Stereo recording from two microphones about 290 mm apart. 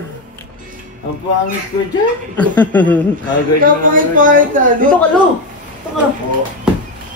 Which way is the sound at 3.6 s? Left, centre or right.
Right.